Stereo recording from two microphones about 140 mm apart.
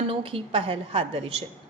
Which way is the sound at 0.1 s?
40° right (ahead or behind).